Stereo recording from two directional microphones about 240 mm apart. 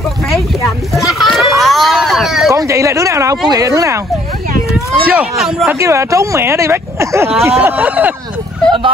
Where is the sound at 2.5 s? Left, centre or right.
Centre.